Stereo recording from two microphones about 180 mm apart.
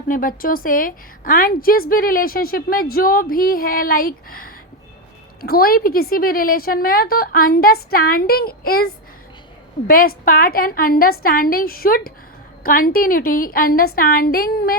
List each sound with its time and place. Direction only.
0.1 s a woman's voice: 50° left (ahead or behind)